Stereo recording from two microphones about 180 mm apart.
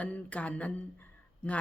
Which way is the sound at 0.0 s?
10° left (ahead or behind).